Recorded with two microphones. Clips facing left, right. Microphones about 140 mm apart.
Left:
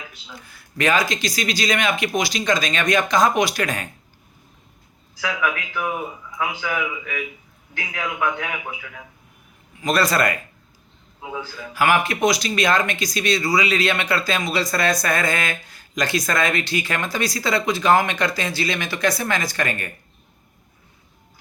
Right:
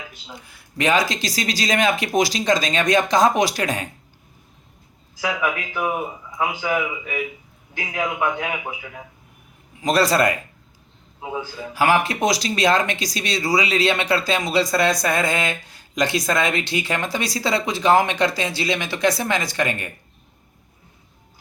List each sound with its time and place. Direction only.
0.3 s speech: 25° right (ahead or behind)
5.2 s speech: 20° right (ahead or behind)